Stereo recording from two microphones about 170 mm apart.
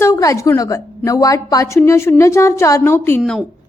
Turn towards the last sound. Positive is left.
turn(degrees=15)  # may be behind; listen again after turning